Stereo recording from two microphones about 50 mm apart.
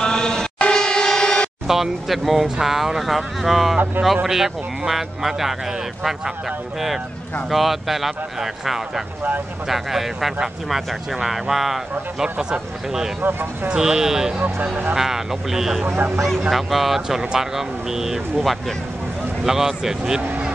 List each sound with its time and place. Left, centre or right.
0.0 s a sound: centre
0.6 s vehicle: centre
1.7 s speech: centre
7.4 s speech: centre
13.2 s speech: right
13.7 s speech: centre
18.4 s speech: centre
19.4 s speech: centre